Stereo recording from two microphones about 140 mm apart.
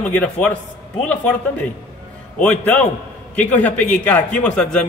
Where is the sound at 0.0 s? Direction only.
10° left (ahead or behind).